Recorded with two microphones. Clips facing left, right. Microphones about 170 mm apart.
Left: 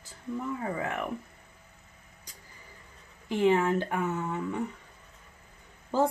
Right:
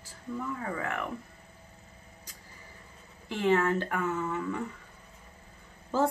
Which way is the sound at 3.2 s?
15° left (ahead or behind).